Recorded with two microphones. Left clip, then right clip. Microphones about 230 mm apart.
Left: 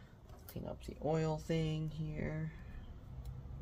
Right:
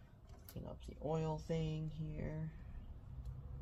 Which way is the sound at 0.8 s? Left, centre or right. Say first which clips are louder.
Left 4 dB; centre.